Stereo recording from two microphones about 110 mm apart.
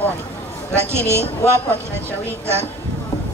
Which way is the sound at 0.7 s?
25° right (ahead or behind).